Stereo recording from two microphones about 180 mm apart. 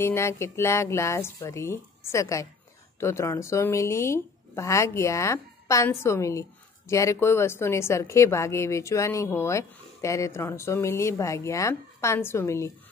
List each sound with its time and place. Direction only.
0.0 s a woman's voice: 15° left (ahead or behind)